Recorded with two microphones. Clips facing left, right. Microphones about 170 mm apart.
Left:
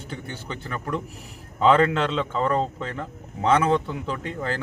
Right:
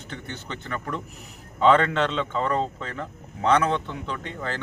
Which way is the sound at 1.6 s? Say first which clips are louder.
Left 1 dB; 5° left (ahead or behind).